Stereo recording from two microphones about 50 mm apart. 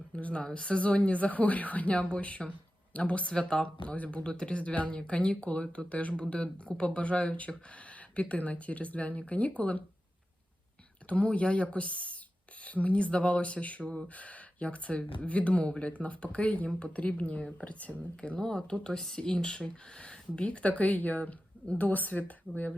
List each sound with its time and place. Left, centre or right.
0.2 s speech: left
11.1 s speech: left
18.3 s speech: centre; by 22.7 s left